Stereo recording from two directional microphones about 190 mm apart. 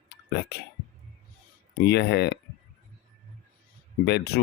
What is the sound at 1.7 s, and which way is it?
Speech, 60° left (ahead or behind).